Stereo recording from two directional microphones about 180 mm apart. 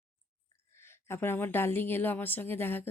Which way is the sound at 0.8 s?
15° left (ahead or behind).